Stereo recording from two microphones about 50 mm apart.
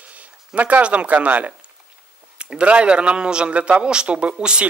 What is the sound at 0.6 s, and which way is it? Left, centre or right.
Speech, right.